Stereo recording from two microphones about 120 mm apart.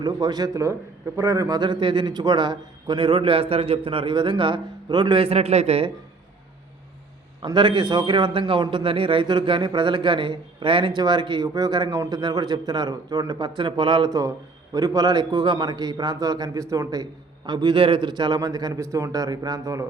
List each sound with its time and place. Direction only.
0.0 s a man's voice: 35° right (ahead or behind); by 5.9 s 60° right (ahead or behind)
7.4 s a man's voice: 40° right (ahead or behind)